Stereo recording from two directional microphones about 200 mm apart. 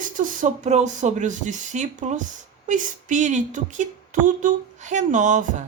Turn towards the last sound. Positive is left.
turn(degrees=-40)  # may be behind; listen again after turning